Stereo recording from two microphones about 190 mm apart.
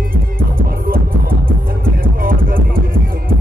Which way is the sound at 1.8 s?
50° right (ahead or behind).